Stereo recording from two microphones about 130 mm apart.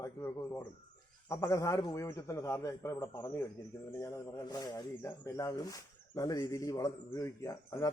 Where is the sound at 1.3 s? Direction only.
25° left (ahead or behind).